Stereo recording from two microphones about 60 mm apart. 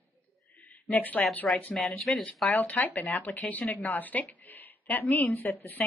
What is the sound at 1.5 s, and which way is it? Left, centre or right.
Speech, centre.